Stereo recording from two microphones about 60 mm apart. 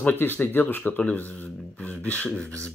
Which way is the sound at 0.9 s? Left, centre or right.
Left.